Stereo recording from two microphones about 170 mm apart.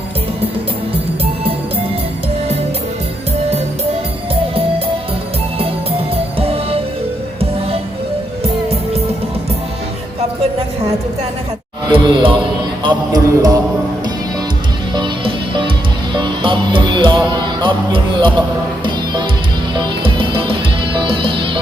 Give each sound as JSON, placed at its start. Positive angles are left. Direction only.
{"t": 6.4, "sound": "music", "side_deg": -35}
{"t": 11.9, "sound": "a man's voice", "side_deg": -30}
{"t": 12.8, "sound": "music", "side_deg": -25}
{"t": 14.9, "sound": "music", "side_deg": -30}
{"t": 19.7, "sound": "music", "side_deg": -30}